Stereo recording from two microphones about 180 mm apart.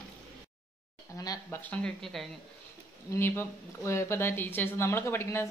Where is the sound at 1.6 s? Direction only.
5° left (ahead or behind).